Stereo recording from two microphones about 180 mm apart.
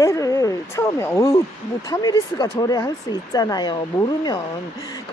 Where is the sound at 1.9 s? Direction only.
20° left (ahead or behind).